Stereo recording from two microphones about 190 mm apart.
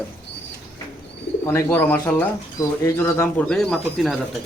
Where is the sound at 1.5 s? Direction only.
10° left (ahead or behind).